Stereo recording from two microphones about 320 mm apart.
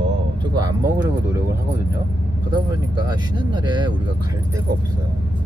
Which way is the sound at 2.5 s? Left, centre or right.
Centre.